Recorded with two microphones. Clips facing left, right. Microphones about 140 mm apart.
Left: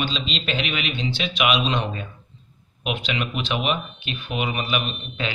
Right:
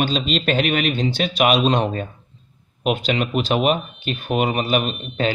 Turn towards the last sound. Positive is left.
turn(degrees=-40)  # may be behind; listen again after turning